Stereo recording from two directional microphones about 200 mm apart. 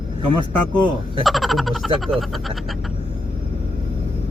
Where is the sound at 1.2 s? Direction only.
Centre (ahead or behind).